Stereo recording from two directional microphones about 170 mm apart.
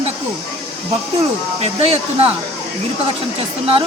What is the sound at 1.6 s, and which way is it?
Speech, 35° right (ahead or behind).